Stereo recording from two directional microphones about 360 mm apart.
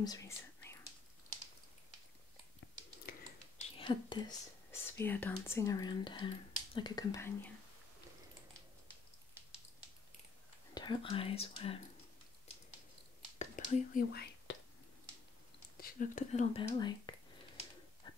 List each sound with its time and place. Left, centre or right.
0.0 s whispering: centre
2.6 s a sound: left
3.1 s speech: centre
10.7 s speech: centre
13.4 s whispering: left
15.8 s speech: left
18.0 s a sound: centre